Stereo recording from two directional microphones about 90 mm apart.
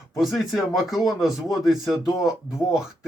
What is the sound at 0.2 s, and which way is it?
A man's voice, centre (ahead or behind).